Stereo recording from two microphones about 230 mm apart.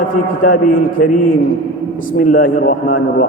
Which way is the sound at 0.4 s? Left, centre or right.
Left.